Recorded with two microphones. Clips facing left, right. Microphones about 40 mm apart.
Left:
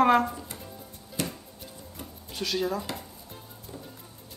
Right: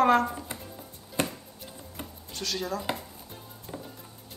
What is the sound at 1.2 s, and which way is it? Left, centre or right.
Music, right.